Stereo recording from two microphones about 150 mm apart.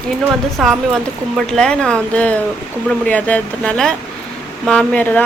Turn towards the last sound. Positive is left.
turn(degrees=10)  # may be behind; listen again after turning